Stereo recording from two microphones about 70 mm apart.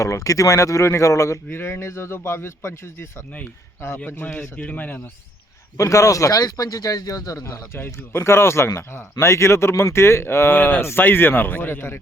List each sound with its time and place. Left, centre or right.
0.0 s speech: left
1.5 s speech: left
5.7 s speech: left
7.4 s speech: left